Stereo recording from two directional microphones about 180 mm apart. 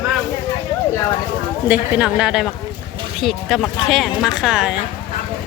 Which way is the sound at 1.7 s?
5° right (ahead or behind).